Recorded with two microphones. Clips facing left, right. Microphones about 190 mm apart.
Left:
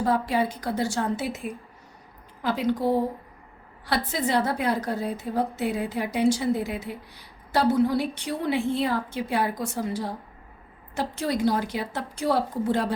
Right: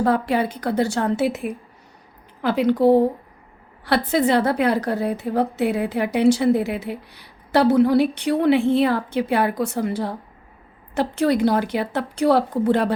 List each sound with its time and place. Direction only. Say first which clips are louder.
0.0 s a woman's voice: right 4 dB; 65° right (ahead or behind)